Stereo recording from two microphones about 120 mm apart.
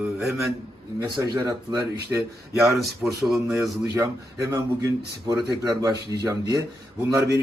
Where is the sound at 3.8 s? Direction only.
30° right (ahead or behind).